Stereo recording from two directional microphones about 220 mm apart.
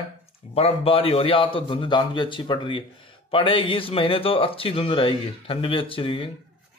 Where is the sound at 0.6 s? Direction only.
25° left (ahead or behind).